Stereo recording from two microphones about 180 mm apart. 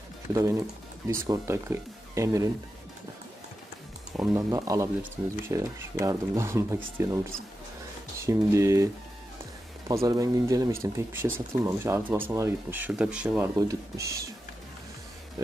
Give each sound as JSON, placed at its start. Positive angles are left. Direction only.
{"t": 0.3, "sound": "speech", "side_deg": -15}
{"t": 4.2, "sound": "speech", "side_deg": -10}
{"t": 8.2, "sound": "speech", "side_deg": -15}
{"t": 9.8, "sound": "speech", "side_deg": -20}
{"t": 13.6, "sound": "speech", "side_deg": -20}